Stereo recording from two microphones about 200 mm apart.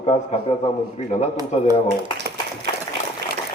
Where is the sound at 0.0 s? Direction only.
30° left (ahead or behind).